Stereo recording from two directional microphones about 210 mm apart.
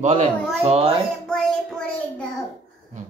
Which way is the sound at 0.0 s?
35° right (ahead or behind).